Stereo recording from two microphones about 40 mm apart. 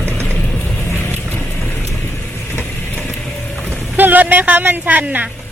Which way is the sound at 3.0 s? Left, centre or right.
Left.